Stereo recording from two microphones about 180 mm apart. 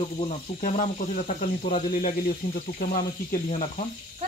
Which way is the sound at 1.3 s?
40° left (ahead or behind).